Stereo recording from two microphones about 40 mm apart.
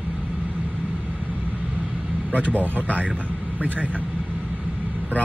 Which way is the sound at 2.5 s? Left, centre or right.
Right.